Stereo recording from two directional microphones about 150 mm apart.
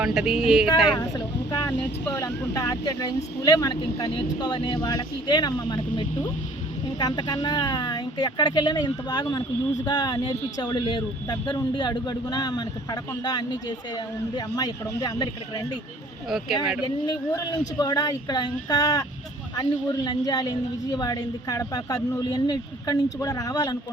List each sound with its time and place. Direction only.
0.0 s speech: centre (ahead or behind)
0.9 s speech: 25° left (ahead or behind)
16.3 s speech: centre (ahead or behind)
16.8 s speech: 30° left (ahead or behind)